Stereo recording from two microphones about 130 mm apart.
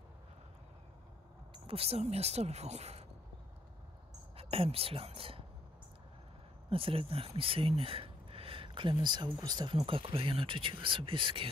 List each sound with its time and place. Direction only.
1.7 s speech: 50° right (ahead or behind)
4.4 s speech: 50° right (ahead or behind)
6.7 s speech: 45° right (ahead or behind)
9.8 s speech: 45° right (ahead or behind)